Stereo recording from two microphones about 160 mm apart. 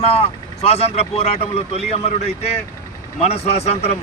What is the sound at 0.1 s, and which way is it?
Speech, 40° left (ahead or behind).